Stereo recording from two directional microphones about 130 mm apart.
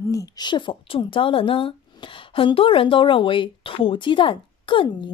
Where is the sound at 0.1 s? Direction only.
30° left (ahead or behind).